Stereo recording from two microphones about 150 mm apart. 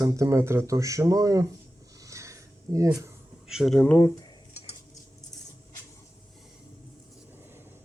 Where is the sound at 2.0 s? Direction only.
20° right (ahead or behind).